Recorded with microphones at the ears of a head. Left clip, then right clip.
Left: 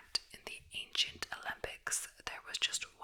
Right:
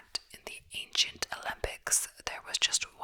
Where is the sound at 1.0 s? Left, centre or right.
Right.